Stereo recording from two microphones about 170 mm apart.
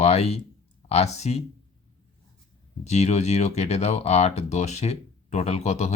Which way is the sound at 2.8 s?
40° left (ahead or behind).